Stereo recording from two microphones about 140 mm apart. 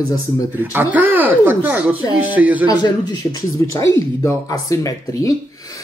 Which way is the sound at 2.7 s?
30° left (ahead or behind).